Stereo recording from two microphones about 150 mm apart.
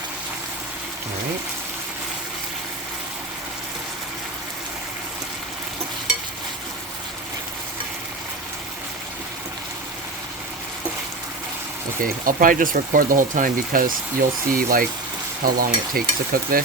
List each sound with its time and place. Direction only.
12.2 s speech: 65° right (ahead or behind)